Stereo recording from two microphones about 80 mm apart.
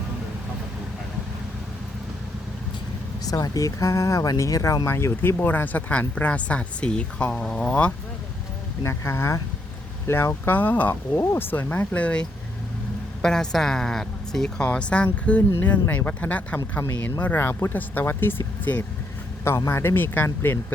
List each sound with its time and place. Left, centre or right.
3.2 s speech: left
4.9 s speech: left
5.4 s a woman's voice: left
8.8 s speech: left; by 12.2 s centre
13.2 s a woman's voice: centre
17.3 s speech: left
19.5 s speech: left